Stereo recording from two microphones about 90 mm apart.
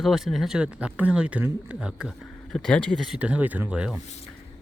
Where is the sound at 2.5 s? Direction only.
10° left (ahead or behind).